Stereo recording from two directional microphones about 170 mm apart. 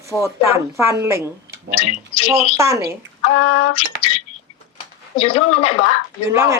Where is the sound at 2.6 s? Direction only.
15° right (ahead or behind).